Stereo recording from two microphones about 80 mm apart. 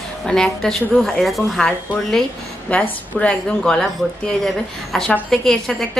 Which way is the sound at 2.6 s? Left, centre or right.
Centre.